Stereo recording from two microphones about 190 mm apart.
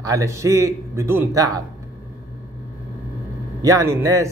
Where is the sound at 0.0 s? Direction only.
15° right (ahead or behind).